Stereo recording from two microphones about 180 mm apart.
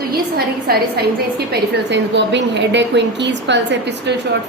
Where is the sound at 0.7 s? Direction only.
55° right (ahead or behind).